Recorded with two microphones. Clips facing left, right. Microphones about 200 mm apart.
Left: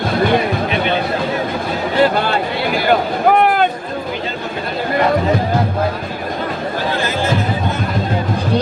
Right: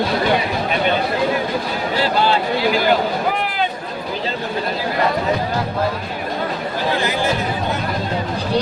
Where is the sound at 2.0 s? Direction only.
55° left (ahead or behind).